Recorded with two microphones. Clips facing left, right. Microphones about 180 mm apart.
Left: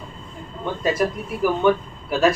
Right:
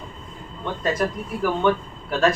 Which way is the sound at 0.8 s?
10° left (ahead or behind).